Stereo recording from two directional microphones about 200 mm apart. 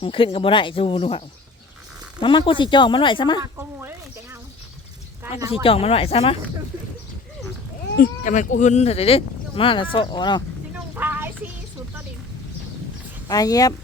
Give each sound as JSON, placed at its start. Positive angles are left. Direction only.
{"t": 0.0, "sound": "speech", "side_deg": 25}
{"t": 2.2, "sound": "speech", "side_deg": 25}
{"t": 3.4, "sound": "speech", "side_deg": -10}
{"t": 5.6, "sound": "speech", "side_deg": 30}
{"t": 7.9, "sound": "speech", "side_deg": 40}
{"t": 10.9, "sound": "a sound", "side_deg": -10}
{"t": 13.2, "sound": "speech", "side_deg": 20}